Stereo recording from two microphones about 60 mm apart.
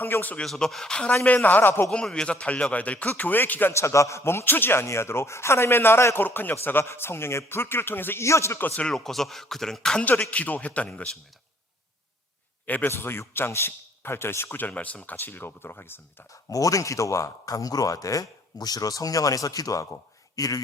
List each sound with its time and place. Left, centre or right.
0.0 s speech: left
0.4 s a man's voice: centre; by 1.9 s left
2.2 s a man's voice: centre; by 3.8 s left
3.8 s a man's voice: left
6.2 s speech: left
6.8 s speech: left
8.2 s a man's voice: left
8.9 s speech: centre
10.0 s a man's voice: left
12.6 s speech: left
13.0 s speech: left
16.5 s speech: left